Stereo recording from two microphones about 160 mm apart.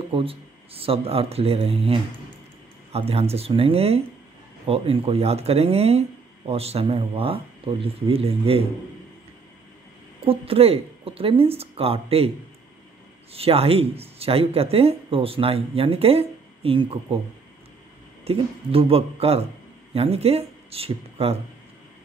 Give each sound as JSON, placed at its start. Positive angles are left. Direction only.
{"t": 0.1, "sound": "speech", "side_deg": -35}
{"t": 10.2, "sound": "speech", "side_deg": -35}
{"t": 13.3, "sound": "speech", "side_deg": -40}
{"t": 18.2, "sound": "speech", "side_deg": -35}